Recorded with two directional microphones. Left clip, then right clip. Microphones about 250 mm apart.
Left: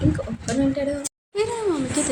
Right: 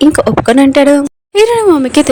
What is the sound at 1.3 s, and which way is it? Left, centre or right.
Speech, right.